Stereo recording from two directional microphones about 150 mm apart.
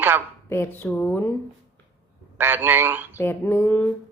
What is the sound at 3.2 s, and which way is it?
Speech, 15° left (ahead or behind).